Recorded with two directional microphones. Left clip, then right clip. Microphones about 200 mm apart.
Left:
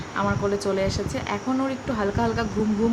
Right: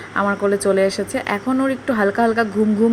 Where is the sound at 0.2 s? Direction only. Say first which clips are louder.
Right 6 dB; 25° right (ahead or behind).